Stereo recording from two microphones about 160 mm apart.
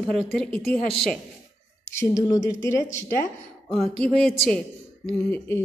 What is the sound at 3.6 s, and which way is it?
Speech, 5° left (ahead or behind).